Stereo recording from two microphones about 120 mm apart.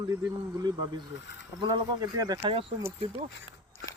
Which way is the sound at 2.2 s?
35° right (ahead or behind).